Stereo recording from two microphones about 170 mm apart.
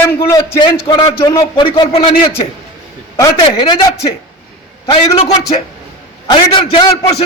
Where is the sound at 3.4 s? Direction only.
30° left (ahead or behind).